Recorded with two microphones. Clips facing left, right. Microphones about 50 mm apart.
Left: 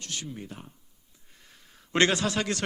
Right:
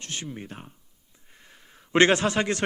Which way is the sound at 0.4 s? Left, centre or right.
Right.